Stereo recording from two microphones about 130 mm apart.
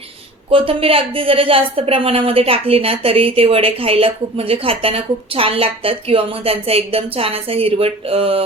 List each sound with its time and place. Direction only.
0.5 s a woman's voice: 45° right (ahead or behind)